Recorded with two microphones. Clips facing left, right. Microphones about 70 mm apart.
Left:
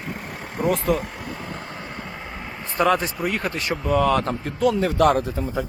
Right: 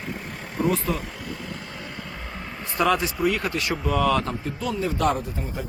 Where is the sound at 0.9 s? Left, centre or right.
Left.